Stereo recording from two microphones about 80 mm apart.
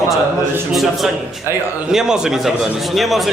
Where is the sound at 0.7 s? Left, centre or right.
Centre.